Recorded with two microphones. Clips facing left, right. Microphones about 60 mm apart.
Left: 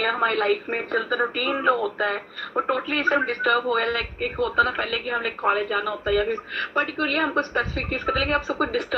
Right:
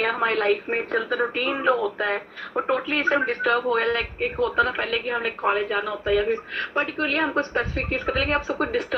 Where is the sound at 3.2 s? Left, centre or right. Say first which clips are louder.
Even; right.